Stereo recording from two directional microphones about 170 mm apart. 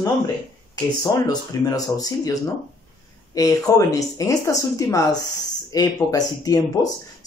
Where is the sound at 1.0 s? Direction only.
20° left (ahead or behind).